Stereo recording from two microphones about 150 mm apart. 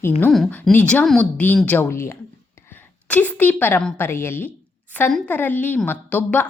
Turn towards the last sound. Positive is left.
turn(degrees=10)  # may be behind; listen again after turning